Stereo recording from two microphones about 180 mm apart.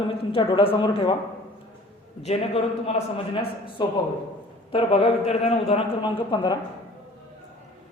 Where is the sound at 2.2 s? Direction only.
35° left (ahead or behind).